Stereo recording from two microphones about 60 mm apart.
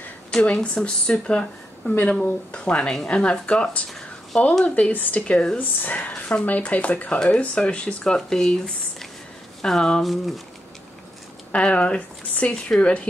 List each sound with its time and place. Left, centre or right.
0.3 s a woman's voice: centre
10.0 s speech: centre
11.5 s speech: centre